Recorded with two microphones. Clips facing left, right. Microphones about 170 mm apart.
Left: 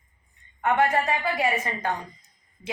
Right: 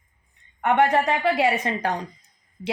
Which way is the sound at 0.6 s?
65° right (ahead or behind).